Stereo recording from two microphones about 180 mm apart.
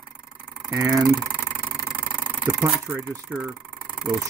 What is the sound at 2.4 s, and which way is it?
Speech, 5° right (ahead or behind).